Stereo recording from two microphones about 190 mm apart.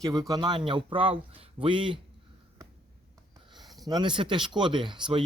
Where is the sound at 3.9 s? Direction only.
25° right (ahead or behind).